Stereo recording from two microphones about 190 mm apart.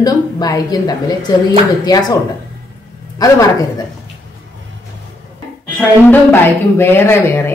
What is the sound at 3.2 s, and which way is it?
Speech, 20° left (ahead or behind).